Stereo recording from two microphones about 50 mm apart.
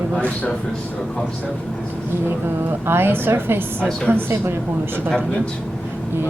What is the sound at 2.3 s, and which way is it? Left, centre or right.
Speech, right.